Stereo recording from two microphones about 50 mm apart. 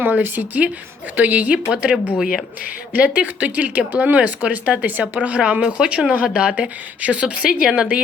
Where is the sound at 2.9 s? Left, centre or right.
Right.